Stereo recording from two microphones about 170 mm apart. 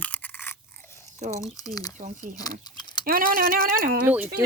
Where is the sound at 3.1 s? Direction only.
60° right (ahead or behind).